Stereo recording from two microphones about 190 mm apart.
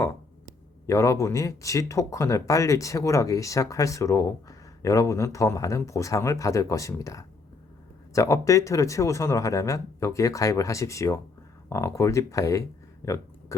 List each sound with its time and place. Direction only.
0.9 s speech: 15° left (ahead or behind)